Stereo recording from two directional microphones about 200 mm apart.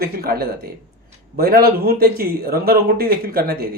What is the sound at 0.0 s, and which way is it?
Speech, 50° right (ahead or behind).